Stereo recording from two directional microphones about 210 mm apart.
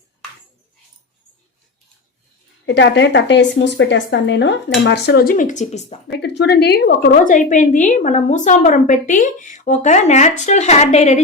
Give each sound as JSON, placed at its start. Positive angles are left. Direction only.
{"t": 2.6, "sound": "a woman's voice", "side_deg": 60}
{"t": 6.1, "sound": "a woman's voice", "side_deg": 55}